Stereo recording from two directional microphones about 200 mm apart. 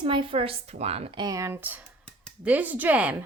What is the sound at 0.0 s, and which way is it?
Speech, 25° right (ahead or behind).